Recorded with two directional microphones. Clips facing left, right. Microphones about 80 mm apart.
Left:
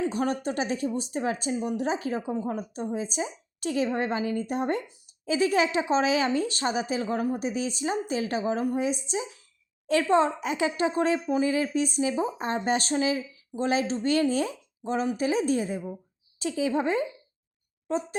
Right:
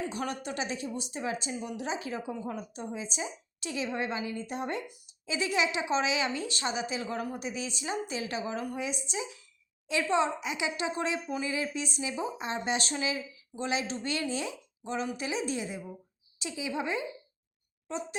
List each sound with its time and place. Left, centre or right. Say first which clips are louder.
0.0 s speech: left 7 dB; left